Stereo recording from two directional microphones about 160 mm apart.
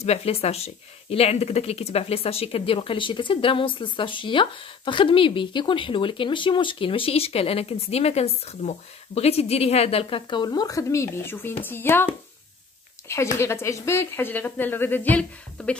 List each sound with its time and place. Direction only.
0.0 s speech: 40° left (ahead or behind); by 12.1 s 15° left (ahead or behind)
13.1 s speech: 15° left (ahead or behind)